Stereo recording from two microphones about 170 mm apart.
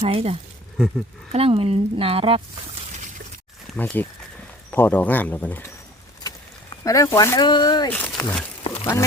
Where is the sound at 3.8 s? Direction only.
5° left (ahead or behind).